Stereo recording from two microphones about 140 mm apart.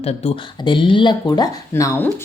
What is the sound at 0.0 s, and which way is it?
Speech, 50° left (ahead or behind).